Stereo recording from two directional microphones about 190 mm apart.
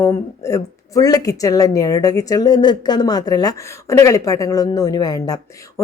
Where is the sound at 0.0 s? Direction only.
15° left (ahead or behind).